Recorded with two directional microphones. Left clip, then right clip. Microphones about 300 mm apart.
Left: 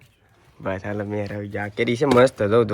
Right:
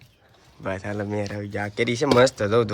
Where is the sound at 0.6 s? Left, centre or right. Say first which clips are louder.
Left 2 dB; centre.